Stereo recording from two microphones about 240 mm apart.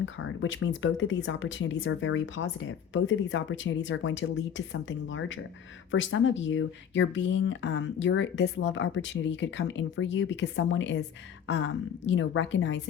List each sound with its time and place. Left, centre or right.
0.0 s speech: left